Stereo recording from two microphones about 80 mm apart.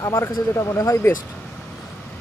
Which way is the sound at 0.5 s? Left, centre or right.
Left.